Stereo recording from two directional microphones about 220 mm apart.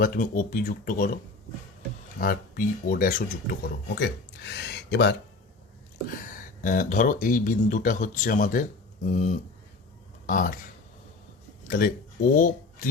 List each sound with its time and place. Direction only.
0.0 s speech: 40° left (ahead or behind)
2.1 s speech: 40° left (ahead or behind)
6.1 s speech: 40° left (ahead or behind)
11.7 s speech: 40° left (ahead or behind)